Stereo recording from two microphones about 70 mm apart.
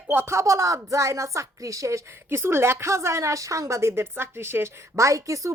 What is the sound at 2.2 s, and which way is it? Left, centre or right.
A woman's voice, right.